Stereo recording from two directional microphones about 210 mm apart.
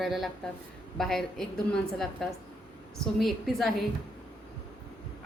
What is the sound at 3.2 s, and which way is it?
Speech, centre (ahead or behind).